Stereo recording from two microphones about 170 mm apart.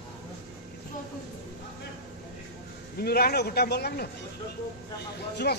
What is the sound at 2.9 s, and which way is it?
A man's voice, 65° left (ahead or behind).